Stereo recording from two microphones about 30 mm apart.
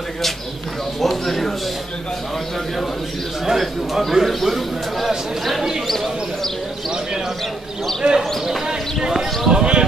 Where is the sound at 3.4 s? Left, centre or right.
Centre.